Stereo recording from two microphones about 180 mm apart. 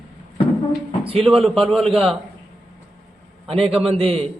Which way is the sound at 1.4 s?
Centre (ahead or behind).